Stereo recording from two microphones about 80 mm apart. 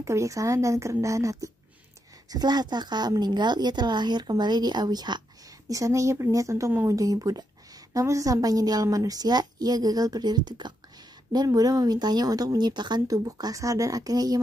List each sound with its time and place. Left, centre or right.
0.0 s a woman's voice: right
2.2 s a woman's voice: right
5.7 s a woman's voice: right
11.3 s speech: right